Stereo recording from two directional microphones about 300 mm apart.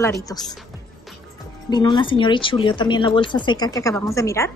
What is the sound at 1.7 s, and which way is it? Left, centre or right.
A woman's voice, centre.